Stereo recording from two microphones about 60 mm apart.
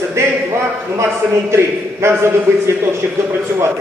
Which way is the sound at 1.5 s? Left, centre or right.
Right.